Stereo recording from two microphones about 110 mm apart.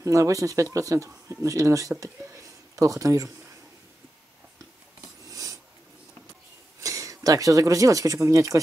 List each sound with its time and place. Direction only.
0.0 s speech: 30° right (ahead or behind)
5.2 s filing: 30° right (ahead or behind)
6.8 s speech: 30° right (ahead or behind)